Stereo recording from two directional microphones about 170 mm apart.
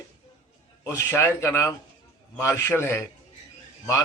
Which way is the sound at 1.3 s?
15° left (ahead or behind).